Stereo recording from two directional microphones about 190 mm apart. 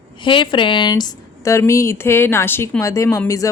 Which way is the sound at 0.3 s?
25° left (ahead or behind).